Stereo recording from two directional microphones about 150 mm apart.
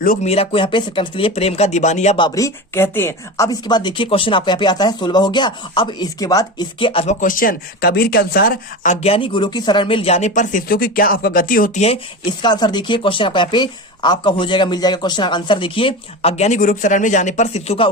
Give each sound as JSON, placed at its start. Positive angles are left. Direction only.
{"t": 0.0, "sound": "speech", "side_deg": 65}
{"t": 0.3, "sound": "speech", "side_deg": 40}
{"t": 2.1, "sound": "speech", "side_deg": 25}
{"t": 7.2, "sound": "speech", "side_deg": 65}
{"t": 9.0, "sound": "speech", "side_deg": 35}
{"t": 12.2, "sound": "speech", "side_deg": 30}
{"t": 16.6, "sound": "speech", "side_deg": 60}